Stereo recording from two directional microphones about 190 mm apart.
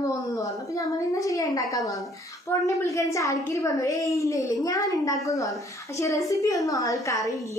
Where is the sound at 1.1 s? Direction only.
15° left (ahead or behind).